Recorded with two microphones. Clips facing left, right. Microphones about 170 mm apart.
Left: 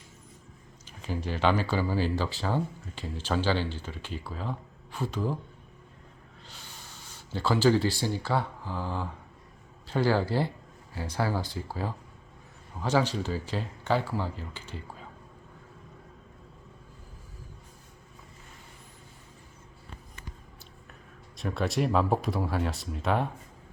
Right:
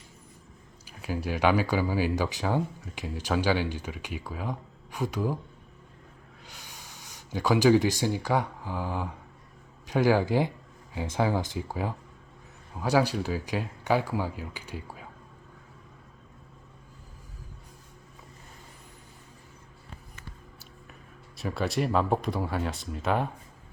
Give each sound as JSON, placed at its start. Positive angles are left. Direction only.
{"t": 0.9, "sound": "speech", "side_deg": -10}
{"t": 6.4, "sound": "speech", "side_deg": -10}
{"t": 21.3, "sound": "speech", "side_deg": 0}